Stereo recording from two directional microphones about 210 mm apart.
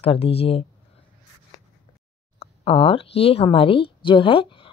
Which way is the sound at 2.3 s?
30° left (ahead or behind).